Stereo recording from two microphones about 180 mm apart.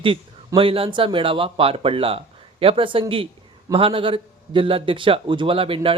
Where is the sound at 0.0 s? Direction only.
30° right (ahead or behind).